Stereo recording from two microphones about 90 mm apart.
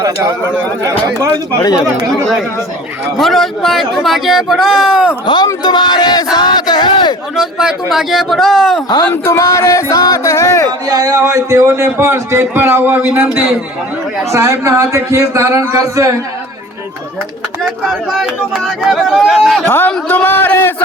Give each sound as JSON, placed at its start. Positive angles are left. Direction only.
{"t": 0.8, "sound": "speech", "side_deg": -35}
{"t": 3.2, "sound": "speech", "side_deg": 0}
{"t": 5.2, "sound": "speech", "side_deg": 60}
{"t": 5.6, "sound": "a sound", "side_deg": 55}
{"t": 6.3, "sound": "speech", "side_deg": 50}
{"t": 7.3, "sound": "speech", "side_deg": -5}
{"t": 9.2, "sound": "speech", "side_deg": 35}
{"t": 10.7, "sound": "a man's voice", "side_deg": -45}
{"t": 14.3, "sound": "speech", "side_deg": -35}
{"t": 17.6, "sound": "speech", "side_deg": 0}
{"t": 19.6, "sound": "a man's voice", "side_deg": 20}